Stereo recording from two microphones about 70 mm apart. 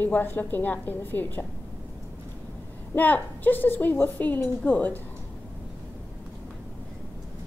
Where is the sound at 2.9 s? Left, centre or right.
Left.